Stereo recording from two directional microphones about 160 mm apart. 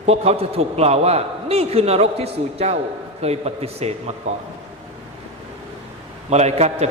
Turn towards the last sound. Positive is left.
turn(degrees=-40)  # may be behind; listen again after turning